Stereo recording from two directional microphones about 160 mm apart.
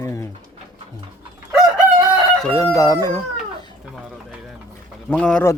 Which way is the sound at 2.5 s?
20° left (ahead or behind).